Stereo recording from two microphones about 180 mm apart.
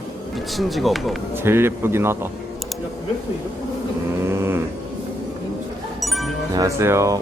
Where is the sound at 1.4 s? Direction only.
15° right (ahead or behind).